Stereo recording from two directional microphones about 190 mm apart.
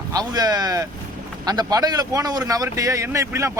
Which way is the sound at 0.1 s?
20° right (ahead or behind).